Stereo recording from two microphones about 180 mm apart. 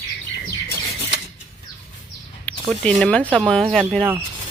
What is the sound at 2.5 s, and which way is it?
Speech, 5° left (ahead or behind).